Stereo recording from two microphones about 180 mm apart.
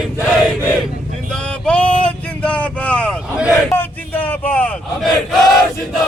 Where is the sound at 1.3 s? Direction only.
5° left (ahead or behind).